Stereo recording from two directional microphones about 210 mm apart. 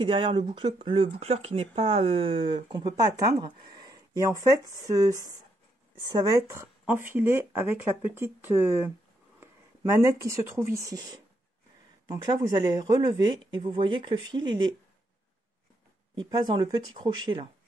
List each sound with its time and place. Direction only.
0.0 s speech: 25° right (ahead or behind)
12.1 s speech: 15° right (ahead or behind)
16.2 s speech: 20° right (ahead or behind)